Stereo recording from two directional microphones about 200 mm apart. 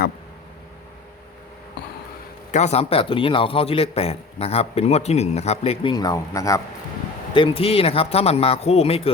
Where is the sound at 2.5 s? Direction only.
35° left (ahead or behind); by 6.6 s 15° left (ahead or behind).